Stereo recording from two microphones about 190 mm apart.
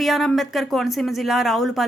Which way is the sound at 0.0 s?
Centre (ahead or behind).